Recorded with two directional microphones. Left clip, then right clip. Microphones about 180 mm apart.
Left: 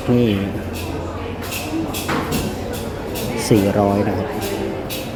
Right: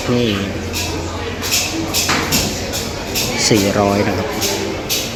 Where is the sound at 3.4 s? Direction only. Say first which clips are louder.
Right 1 dB; 20° left (ahead or behind).